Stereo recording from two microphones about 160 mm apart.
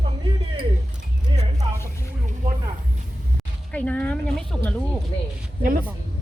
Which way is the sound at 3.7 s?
10° left (ahead or behind).